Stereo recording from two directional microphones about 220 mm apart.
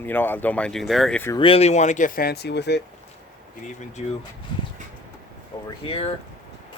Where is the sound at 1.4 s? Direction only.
25° left (ahead or behind); by 2.8 s 50° left (ahead or behind).